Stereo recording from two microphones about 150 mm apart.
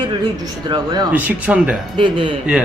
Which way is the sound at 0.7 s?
25° right (ahead or behind).